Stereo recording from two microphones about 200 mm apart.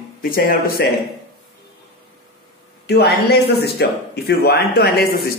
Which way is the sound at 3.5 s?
55° left (ahead or behind).